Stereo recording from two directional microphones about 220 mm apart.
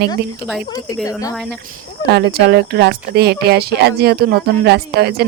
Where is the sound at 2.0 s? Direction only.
45° right (ahead or behind).